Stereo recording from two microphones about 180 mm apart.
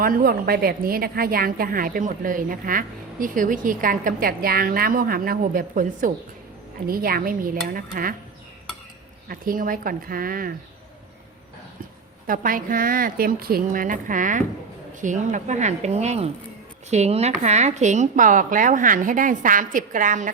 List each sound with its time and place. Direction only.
0.0 s a woman's voice: 55° right (ahead or behind)
9.3 s a woman's voice: 50° right (ahead or behind)
12.3 s a woman's voice: 50° right (ahead or behind)